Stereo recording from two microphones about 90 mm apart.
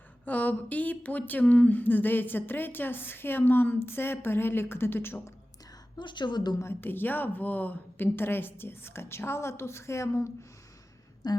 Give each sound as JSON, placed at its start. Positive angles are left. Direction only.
{"t": 0.3, "sound": "speech", "side_deg": 15}
{"t": 6.0, "sound": "speech", "side_deg": 60}
{"t": 6.6, "sound": "speech", "side_deg": 25}
{"t": 11.2, "sound": "a sound", "side_deg": 45}